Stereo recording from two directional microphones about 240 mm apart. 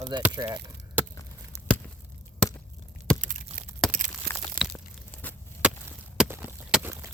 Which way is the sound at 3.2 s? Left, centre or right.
Right.